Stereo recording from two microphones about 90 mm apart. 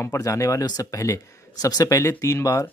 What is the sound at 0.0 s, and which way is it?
Speech, 35° left (ahead or behind).